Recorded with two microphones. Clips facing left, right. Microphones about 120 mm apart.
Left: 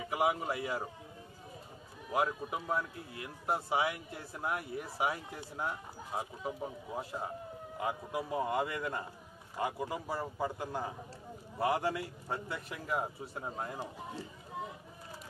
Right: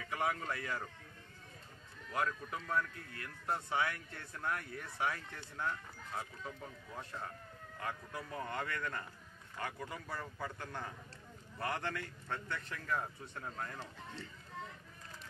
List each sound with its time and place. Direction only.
0.0 s a man's voice: 15° left (ahead or behind)
2.0 s a man's voice: 20° left (ahead or behind)
4.2 s a man's voice: 30° left (ahead or behind)
4.5 s a man's voice: 15° left (ahead or behind)
7.1 s siren: 15° left (ahead or behind)
8.1 s a man's voice: 15° left (ahead or behind)
11.6 s speech: 15° left (ahead or behind)
12.3 s a man's voice: 30° left (ahead or behind)
12.5 s speech: 15° left (ahead or behind)